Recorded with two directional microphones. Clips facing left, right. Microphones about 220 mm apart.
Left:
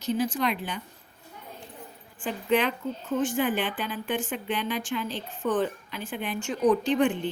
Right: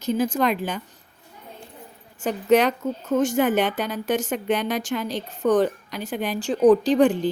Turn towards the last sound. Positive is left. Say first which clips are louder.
# right 6 dB
turn(degrees=-35)  # may be behind; listen again after turning